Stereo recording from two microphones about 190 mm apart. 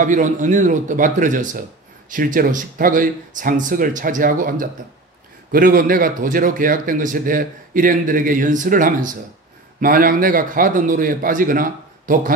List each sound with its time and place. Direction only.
0.0 s speech: 40° right (ahead or behind)